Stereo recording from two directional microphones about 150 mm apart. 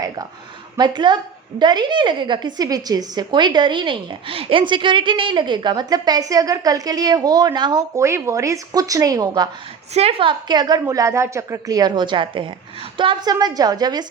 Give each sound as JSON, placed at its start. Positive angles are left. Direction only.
{"t": 0.8, "sound": "a woman's voice", "side_deg": -30}
{"t": 9.9, "sound": "a woman's voice", "side_deg": -40}